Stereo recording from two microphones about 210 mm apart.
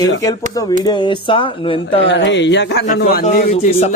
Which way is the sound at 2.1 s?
60° left (ahead or behind).